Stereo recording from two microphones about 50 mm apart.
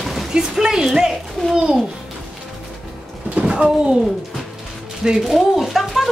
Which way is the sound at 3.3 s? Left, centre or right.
Centre.